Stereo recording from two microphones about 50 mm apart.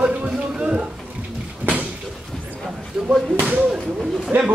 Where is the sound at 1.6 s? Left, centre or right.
Right.